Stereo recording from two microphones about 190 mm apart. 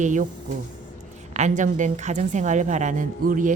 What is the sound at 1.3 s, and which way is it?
A woman's voice, 40° right (ahead or behind).